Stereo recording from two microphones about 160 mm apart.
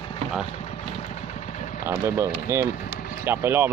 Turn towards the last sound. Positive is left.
turn(degrees=-15)  # may be behind; listen again after turning